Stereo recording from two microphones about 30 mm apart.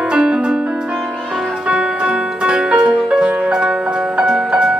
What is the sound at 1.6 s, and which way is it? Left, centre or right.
Music, right.